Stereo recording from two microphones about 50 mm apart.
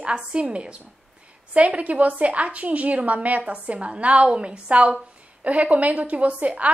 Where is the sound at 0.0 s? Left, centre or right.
Centre.